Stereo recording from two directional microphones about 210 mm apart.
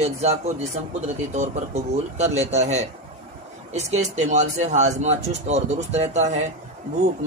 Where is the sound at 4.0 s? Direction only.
35° right (ahead or behind).